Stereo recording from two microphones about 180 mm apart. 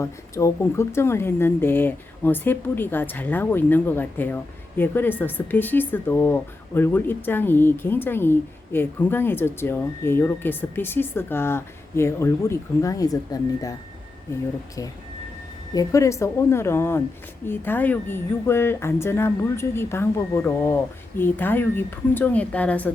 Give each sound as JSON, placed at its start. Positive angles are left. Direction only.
{"t": 0.0, "sound": "speech", "side_deg": 15}
{"t": 15.7, "sound": "speech", "side_deg": 20}